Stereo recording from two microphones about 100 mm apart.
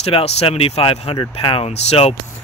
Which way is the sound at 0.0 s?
85° left.